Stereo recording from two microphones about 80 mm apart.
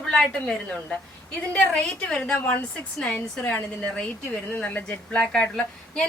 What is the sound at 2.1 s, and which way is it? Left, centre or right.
Speech, centre.